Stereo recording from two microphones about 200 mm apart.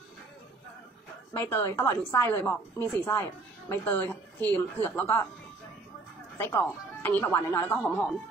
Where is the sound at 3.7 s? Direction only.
10° left (ahead or behind).